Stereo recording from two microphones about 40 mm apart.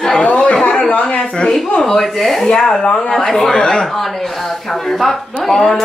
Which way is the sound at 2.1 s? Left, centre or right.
Centre.